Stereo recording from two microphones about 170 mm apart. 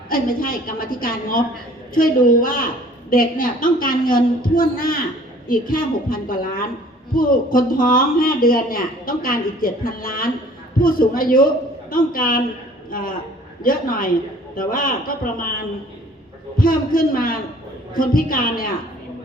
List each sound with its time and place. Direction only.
0.1 s speech: 60° left (ahead or behind)